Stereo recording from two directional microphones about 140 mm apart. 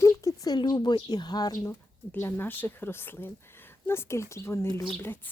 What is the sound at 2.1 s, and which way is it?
Speech, 15° left (ahead or behind).